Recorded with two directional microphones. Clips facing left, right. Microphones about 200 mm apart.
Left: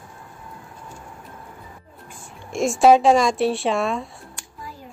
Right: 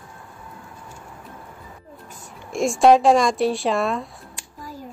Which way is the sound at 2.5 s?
Centre (ahead or behind).